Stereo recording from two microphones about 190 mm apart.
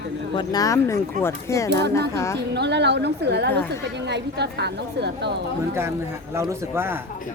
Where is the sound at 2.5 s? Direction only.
65° right (ahead or behind).